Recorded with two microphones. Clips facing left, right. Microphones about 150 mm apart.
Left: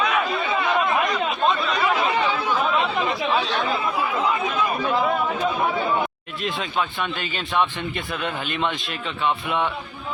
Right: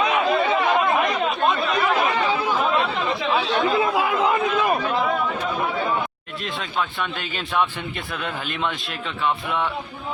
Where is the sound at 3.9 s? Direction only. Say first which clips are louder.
Right 3 dB; 90° right.